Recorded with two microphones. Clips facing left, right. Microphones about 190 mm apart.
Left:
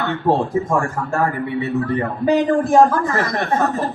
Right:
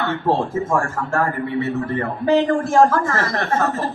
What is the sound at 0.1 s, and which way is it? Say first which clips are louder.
A woman's voice: left 5 dB; 15° left (ahead or behind).